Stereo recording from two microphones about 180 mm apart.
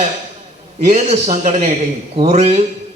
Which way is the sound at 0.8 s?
40° right (ahead or behind).